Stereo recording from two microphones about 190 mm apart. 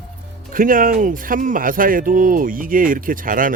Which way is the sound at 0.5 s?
45° right (ahead or behind).